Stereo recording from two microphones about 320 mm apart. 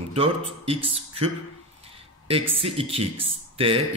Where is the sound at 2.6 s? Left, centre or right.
Centre.